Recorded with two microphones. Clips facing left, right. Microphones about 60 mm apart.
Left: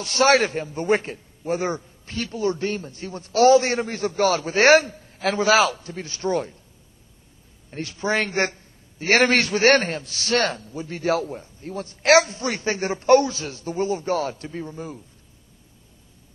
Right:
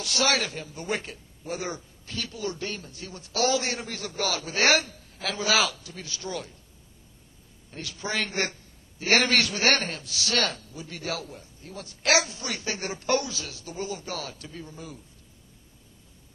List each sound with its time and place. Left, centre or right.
0.0 s a man's voice: left
7.7 s a man's voice: left